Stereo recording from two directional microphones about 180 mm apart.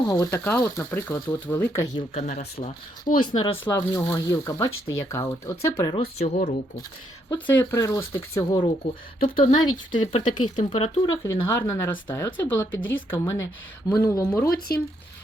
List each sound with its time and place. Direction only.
0.1 s speech: 15° left (ahead or behind)
2.0 s speech: 40° left (ahead or behind)
3.2 s speech: 25° left (ahead or behind)
3.6 s speech: 15° left (ahead or behind)
5.9 s speech: 35° left (ahead or behind)
7.4 s speech: 10° left (ahead or behind)
8.8 s speech: 35° left (ahead or behind)
11.4 s speech: 15° left (ahead or behind)
14.4 s speech: 55° left (ahead or behind)